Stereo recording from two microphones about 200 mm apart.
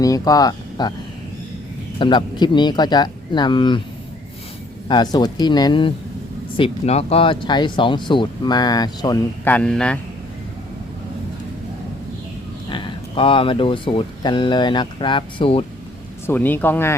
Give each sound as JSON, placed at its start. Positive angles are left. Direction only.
{"t": 0.0, "sound": "speech", "side_deg": 20}
{"t": 2.0, "sound": "speech", "side_deg": 25}
{"t": 5.1, "sound": "speech", "side_deg": 20}
{"t": 12.7, "sound": "speech", "side_deg": 25}
{"t": 16.2, "sound": "speech", "side_deg": 10}